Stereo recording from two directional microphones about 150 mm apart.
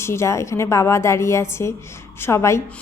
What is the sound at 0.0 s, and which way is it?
A woman's voice, 20° left (ahead or behind).